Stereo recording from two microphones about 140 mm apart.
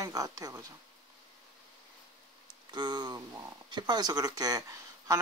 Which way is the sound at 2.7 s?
30° right (ahead or behind).